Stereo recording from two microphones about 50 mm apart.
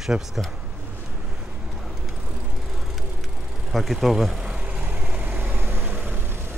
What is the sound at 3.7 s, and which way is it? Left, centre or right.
Speech, centre.